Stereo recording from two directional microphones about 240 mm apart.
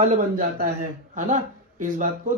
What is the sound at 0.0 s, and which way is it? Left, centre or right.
Speech, right.